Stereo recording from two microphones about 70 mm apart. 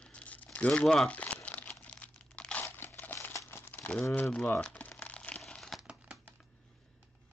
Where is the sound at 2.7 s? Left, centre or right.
Left.